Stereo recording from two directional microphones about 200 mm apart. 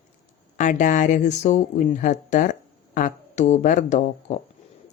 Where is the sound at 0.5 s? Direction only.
40° left (ahead or behind).